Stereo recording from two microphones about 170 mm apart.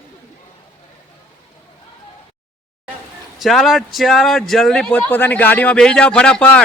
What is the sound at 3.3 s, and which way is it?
Speech, centre (ahead or behind).